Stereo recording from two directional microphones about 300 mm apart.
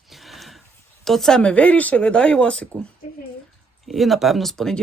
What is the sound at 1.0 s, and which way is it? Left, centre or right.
Speech, centre.